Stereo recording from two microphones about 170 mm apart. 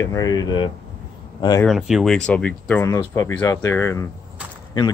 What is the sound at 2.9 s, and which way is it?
Speech, 20° left (ahead or behind).